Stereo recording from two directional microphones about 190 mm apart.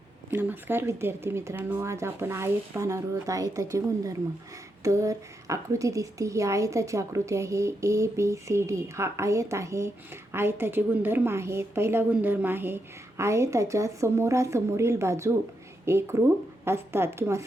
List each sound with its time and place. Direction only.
0.3 s speech: 10° right (ahead or behind)